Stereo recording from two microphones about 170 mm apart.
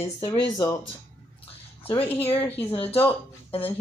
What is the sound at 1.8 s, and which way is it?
Speech, 35° left (ahead or behind).